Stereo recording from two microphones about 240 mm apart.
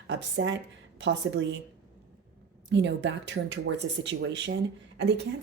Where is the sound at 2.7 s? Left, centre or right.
Right.